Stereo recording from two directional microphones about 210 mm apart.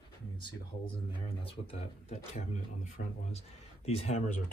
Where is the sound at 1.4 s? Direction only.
30° left (ahead or behind).